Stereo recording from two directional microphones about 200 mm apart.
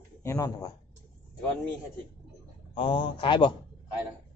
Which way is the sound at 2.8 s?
25° left (ahead or behind).